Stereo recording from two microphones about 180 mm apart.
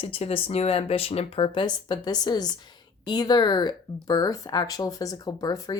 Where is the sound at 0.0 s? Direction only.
35° left (ahead or behind).